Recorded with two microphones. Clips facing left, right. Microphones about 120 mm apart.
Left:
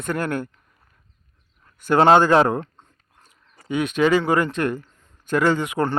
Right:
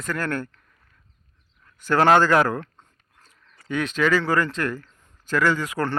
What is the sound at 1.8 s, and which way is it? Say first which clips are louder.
Speech: left 3 dB; 20° left (ahead or behind).